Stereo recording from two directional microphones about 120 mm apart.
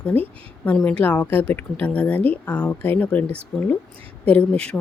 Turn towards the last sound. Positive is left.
turn(degrees=10)  # may be behind; listen again after turning